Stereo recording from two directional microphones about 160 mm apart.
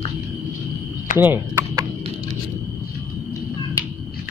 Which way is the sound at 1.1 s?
10° right (ahead or behind).